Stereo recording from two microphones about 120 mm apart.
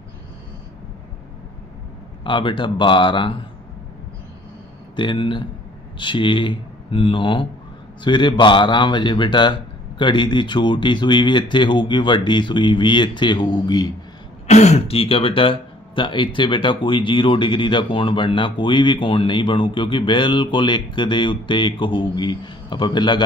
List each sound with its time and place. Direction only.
2.2 s speech: 45° left (ahead or behind)
4.9 s a man's voice: 40° left (ahead or behind)
14.5 s speech: 70° left (ahead or behind); by 23.2 s 40° left (ahead or behind)